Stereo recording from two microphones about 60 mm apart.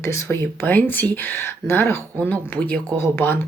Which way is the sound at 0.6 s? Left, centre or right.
Left.